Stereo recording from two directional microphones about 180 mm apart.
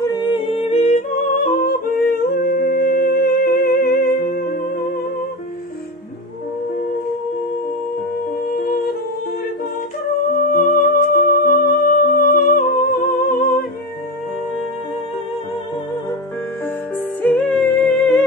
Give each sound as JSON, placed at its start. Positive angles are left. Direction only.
{"t": 0.1, "sound": "humming", "side_deg": 25}
{"t": 8.6, "sound": "humming", "side_deg": 55}
{"t": 10.3, "sound": "music", "side_deg": 50}
{"t": 16.6, "sound": "music", "side_deg": 10}